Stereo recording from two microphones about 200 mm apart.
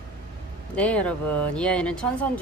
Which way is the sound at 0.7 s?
5° left (ahead or behind).